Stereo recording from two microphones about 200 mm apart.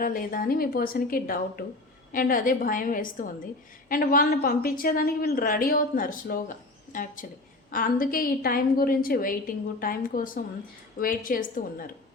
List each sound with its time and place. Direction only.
0.0 s a woman's voice: 45° left (ahead or behind)